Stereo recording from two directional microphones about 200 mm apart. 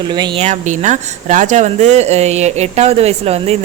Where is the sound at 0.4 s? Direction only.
35° right (ahead or behind).